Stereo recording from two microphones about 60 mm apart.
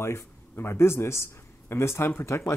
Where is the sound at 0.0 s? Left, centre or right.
Left.